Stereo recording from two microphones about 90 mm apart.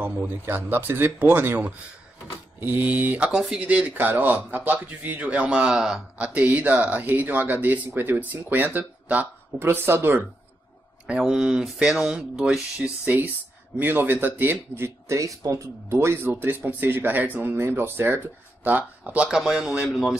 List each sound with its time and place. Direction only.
0.0 s speech: 20° right (ahead or behind)
11.1 s a man's voice: 10° right (ahead or behind)